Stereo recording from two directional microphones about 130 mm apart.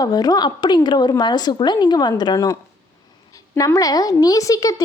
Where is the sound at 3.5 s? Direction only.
25° left (ahead or behind).